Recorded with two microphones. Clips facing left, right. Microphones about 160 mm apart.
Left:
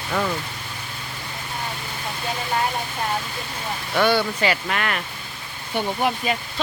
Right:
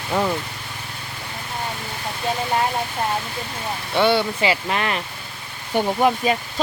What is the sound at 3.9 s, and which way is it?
Speech, 25° right (ahead or behind).